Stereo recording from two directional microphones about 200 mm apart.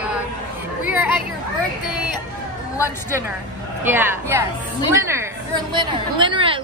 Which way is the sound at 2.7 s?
10° left (ahead or behind).